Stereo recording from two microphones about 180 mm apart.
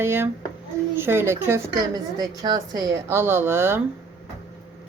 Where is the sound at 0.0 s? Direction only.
15° right (ahead or behind).